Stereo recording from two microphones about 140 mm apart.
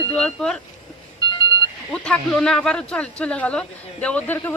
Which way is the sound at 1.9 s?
5° left (ahead or behind).